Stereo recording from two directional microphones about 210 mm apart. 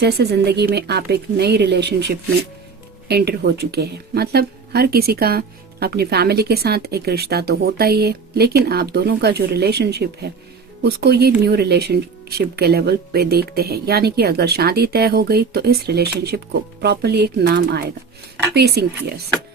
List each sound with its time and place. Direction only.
0.0 s speech: 50° right (ahead or behind)